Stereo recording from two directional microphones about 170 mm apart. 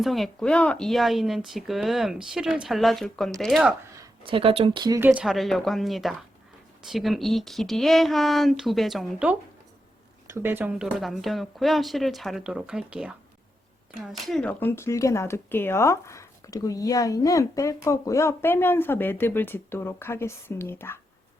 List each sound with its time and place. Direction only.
0.0 s speech: centre (ahead or behind)
4.3 s speech: 35° right (ahead or behind)
4.9 s speech: 10° right (ahead or behind); by 21.0 s 15° left (ahead or behind)